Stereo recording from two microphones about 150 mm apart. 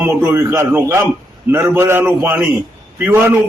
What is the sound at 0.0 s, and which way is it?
A man's voice, 10° right (ahead or behind).